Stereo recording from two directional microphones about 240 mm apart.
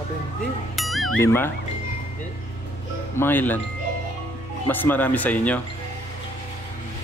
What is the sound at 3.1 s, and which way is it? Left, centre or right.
Speech, centre.